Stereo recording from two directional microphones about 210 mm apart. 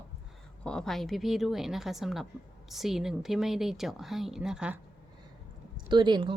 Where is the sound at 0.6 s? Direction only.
5° left (ahead or behind).